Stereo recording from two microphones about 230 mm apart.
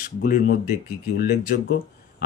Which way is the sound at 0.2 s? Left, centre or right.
Left.